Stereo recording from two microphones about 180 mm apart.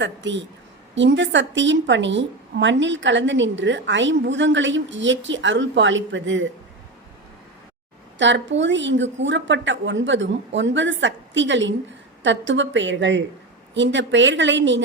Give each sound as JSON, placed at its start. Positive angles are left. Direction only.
{"t": 0.0, "sound": "a woman's voice", "side_deg": -90}
{"t": 8.2, "sound": "a woman's voice", "side_deg": -85}